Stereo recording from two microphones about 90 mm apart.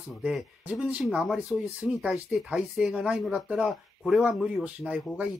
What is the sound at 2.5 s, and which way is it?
Speech, 10° right (ahead or behind).